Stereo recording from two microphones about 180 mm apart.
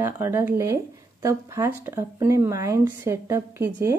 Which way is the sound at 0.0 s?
15° right (ahead or behind).